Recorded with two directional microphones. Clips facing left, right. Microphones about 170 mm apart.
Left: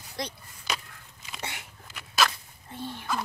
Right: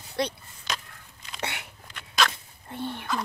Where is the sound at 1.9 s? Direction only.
5° left (ahead or behind).